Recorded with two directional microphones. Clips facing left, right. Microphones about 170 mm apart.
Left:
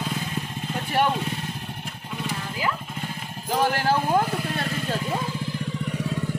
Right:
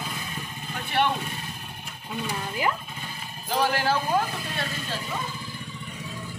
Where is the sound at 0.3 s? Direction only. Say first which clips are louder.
Left 6 dB; 90° left.